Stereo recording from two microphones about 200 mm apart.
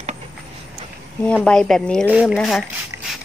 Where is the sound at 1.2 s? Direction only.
5° left (ahead or behind).